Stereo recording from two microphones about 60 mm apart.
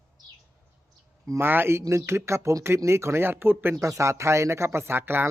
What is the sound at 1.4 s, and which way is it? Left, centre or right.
Speech, right.